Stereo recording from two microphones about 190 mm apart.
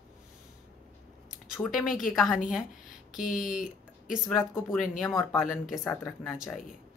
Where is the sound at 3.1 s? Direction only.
45° left (ahead or behind).